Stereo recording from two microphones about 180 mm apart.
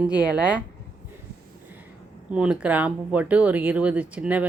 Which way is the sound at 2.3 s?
5° right (ahead or behind).